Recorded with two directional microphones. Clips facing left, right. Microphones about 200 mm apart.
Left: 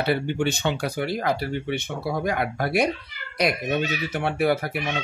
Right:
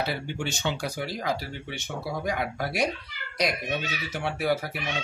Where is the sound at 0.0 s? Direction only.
60° left (ahead or behind).